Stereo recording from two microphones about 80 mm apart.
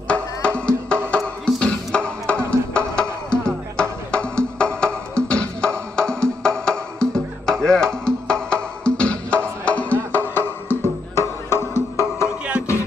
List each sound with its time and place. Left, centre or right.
0.1 s music: centre; by 12.3 s left